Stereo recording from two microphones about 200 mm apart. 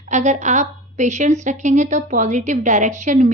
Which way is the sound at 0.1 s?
35° right (ahead or behind).